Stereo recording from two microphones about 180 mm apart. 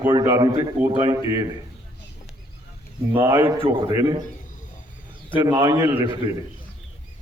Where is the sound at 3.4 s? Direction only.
25° right (ahead or behind).